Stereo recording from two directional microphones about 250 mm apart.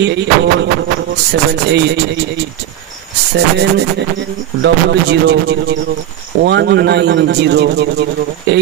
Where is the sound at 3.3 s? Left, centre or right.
Right.